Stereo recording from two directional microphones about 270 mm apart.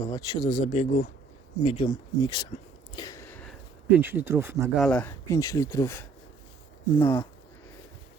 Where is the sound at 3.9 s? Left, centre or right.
Centre.